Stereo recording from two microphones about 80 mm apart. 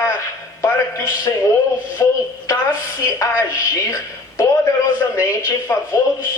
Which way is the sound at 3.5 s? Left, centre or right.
Left.